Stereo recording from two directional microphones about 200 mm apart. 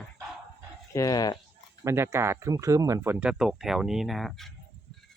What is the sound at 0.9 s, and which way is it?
Speech, 20° left (ahead or behind).